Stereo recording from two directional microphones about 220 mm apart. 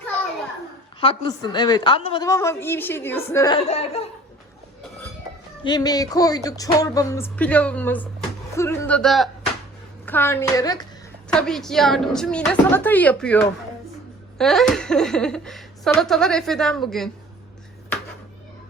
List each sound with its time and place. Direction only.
1.0 s a woman's voice: 20° left (ahead or behind)
2.2 s music: 15° left (ahead or behind)
3.7 s a woman's voice: 30° left (ahead or behind)
5.6 s music: 15° left (ahead or behind)
8.5 s a sound: 10° left (ahead or behind)
10.1 s music: 10° left (ahead or behind)
11.3 s a woman's voice: 5° left (ahead or behind)